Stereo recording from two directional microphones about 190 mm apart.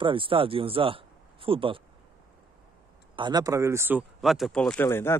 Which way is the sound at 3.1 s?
25° right (ahead or behind).